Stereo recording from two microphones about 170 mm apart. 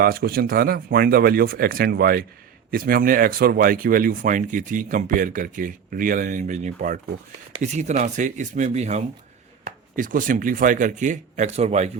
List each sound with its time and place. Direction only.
0.0 s speech: 60° right (ahead or behind); by 11.9 s 40° right (ahead or behind)